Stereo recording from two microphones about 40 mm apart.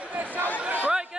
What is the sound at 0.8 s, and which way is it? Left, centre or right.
Chatter, right.